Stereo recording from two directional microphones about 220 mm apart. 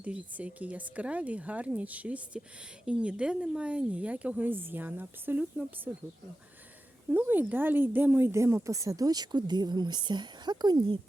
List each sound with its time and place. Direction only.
0.0 s speech: 5° right (ahead or behind)
7.1 s speech: 10° right (ahead or behind)